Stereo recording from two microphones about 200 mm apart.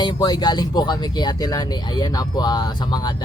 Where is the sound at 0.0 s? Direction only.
20° left (ahead or behind).